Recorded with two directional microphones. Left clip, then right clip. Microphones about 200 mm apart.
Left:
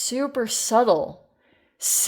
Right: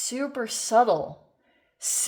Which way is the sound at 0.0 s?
45° left (ahead or behind).